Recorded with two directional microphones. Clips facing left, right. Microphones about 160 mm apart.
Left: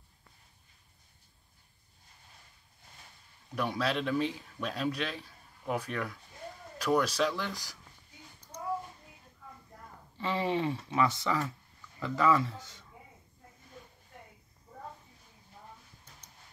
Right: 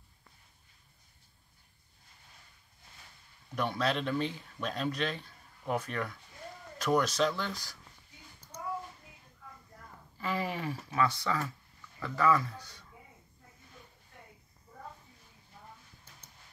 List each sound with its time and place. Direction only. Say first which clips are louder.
3.5 s speech: even; 5° left (ahead or behind)
10.1 s speech: left 4 dB; 25° left (ahead or behind)